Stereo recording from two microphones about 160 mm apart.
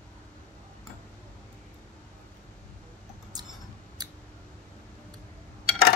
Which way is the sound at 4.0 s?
25° right (ahead or behind).